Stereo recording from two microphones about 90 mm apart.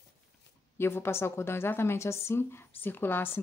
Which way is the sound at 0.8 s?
25° left (ahead or behind).